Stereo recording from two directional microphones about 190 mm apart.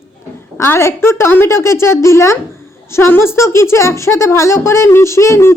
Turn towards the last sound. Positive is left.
turn(degrees=15)  # may be behind; listen again after turning